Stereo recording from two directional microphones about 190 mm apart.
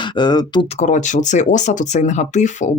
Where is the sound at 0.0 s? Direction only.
25° left (ahead or behind).